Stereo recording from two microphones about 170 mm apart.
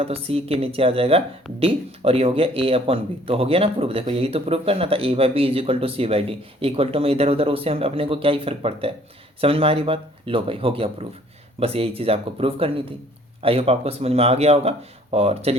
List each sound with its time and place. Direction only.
0.0 s speech: 35° right (ahead or behind)